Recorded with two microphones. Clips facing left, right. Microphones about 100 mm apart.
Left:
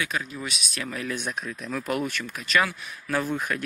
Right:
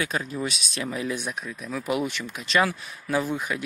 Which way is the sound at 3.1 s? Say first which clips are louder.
Right 1 dB; 15° right (ahead or behind).